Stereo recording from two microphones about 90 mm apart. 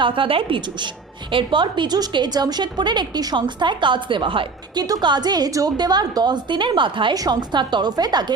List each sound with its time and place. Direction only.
0.0 s a woman's voice: 75° right (ahead or behind)
4.8 s a woman's voice: 50° right (ahead or behind); by 7.2 s 65° right (ahead or behind)
7.2 s a woman's voice: 55° right (ahead or behind)